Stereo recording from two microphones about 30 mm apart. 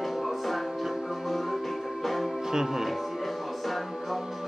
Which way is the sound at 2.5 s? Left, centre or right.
Centre.